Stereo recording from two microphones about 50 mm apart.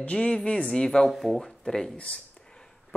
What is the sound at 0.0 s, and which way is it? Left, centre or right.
Speech, left.